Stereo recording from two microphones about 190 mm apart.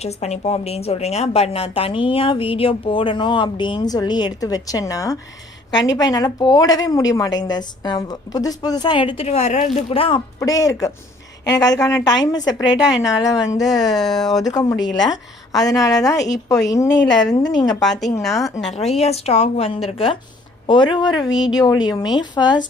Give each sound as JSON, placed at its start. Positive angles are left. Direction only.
{"t": 0.0, "sound": "a woman's voice", "side_deg": 35}
{"t": 13.7, "sound": "speech", "side_deg": 0}
{"t": 14.4, "sound": "a woman's voice", "side_deg": 20}
{"t": 15.8, "sound": "a woman's voice", "side_deg": 20}
{"t": 18.7, "sound": "a woman's voice", "side_deg": 35}